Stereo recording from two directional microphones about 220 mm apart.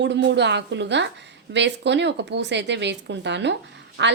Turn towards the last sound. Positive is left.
turn(degrees=-55)  # may be behind; listen again after turning